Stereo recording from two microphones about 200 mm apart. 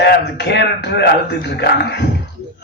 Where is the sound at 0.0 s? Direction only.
55° left (ahead or behind).